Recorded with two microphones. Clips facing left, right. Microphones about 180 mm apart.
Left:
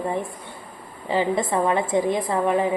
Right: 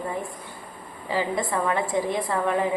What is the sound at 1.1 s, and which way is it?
A woman's voice, 25° left (ahead or behind).